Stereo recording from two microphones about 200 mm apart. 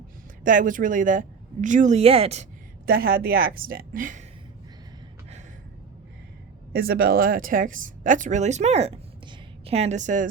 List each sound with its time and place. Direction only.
0.4 s speech: 40° right (ahead or behind)
2.8 s speech: 45° right (ahead or behind)
6.7 s speech: 50° right (ahead or behind)